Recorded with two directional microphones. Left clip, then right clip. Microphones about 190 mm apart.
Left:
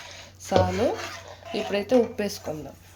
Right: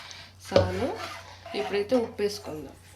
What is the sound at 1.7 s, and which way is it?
Speech, 50° left (ahead or behind).